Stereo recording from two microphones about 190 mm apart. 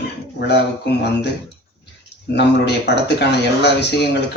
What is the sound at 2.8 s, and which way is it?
Speech, 60° left (ahead or behind).